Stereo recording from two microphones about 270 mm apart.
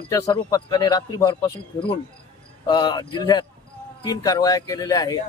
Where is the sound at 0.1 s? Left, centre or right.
Centre.